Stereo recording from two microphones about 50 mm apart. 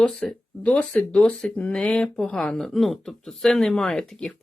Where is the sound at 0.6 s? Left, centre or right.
Left.